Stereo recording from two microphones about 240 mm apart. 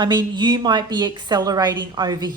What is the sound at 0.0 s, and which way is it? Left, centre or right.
A woman's voice, centre.